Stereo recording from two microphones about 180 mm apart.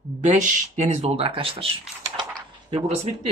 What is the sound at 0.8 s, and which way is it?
Speech, 40° right (ahead or behind).